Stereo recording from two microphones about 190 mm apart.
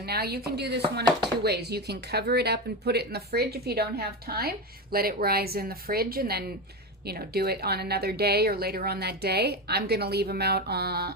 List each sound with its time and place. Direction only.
0.0 s speech: 55° right (ahead or behind)